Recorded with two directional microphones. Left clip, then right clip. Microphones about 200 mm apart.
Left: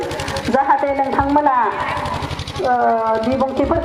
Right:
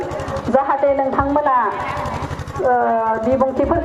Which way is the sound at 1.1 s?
15° right (ahead or behind).